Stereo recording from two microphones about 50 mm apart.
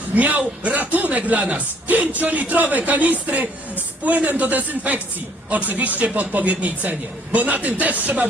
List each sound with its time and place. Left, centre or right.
0.1 s a man's voice: right